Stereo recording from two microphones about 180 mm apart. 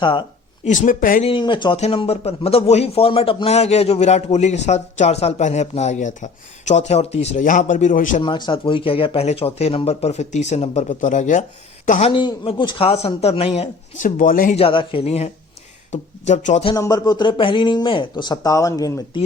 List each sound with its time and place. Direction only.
0.0 s speech: 25° left (ahead or behind)
0.6 s speech: 45° left (ahead or behind)
1.2 s speech: 30° left (ahead or behind); by 8.2 s 45° left (ahead or behind)
8.2 s speech: 25° left (ahead or behind); by 12.1 s 40° left (ahead or behind)
12.1 s speech: 25° left (ahead or behind)
14.0 s speech: 50° left (ahead or behind)
14.5 s speech: 30° left (ahead or behind)
16.6 s speech: 20° left (ahead or behind)